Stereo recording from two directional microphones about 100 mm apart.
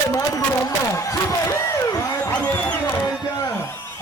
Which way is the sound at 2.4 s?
15° left (ahead or behind).